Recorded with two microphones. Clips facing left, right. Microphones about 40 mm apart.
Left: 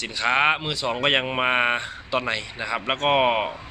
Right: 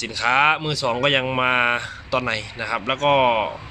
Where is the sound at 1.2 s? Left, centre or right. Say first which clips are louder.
Right 2 dB; centre.